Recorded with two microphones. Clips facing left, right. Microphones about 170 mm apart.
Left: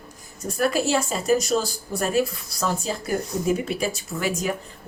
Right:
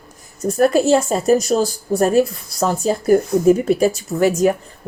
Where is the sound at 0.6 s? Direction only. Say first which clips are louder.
Right 8 dB; 45° right (ahead or behind).